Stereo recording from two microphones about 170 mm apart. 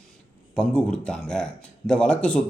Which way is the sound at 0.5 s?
5° left (ahead or behind).